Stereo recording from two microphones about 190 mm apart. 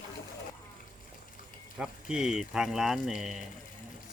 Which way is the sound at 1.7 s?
5° right (ahead or behind).